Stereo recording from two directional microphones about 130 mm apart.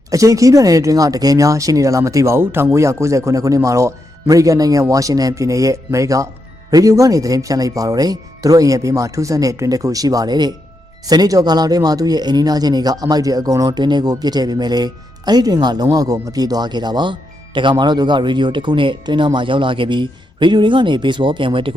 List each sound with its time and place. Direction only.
0.1 s speech: 25° right (ahead or behind); by 21.7 s 40° right (ahead or behind)